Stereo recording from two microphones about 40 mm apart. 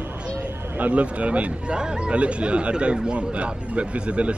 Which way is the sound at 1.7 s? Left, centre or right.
Right.